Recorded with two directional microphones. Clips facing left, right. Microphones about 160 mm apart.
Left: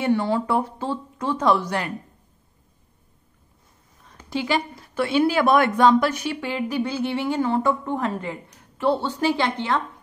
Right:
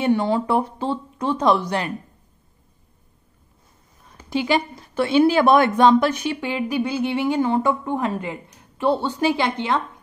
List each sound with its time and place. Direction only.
0.0 s speech: 20° right (ahead or behind)
4.3 s speech: 20° right (ahead or behind)